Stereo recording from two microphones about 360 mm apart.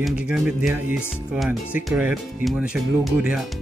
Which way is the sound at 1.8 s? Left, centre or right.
Centre.